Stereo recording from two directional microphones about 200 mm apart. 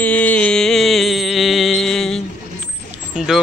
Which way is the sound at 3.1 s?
Centre (ahead or behind).